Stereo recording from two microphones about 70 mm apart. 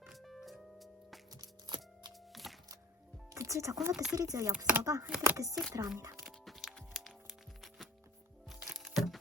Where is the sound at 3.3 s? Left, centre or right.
Right.